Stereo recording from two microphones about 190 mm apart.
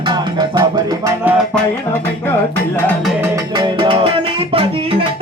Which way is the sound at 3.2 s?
20° right (ahead or behind).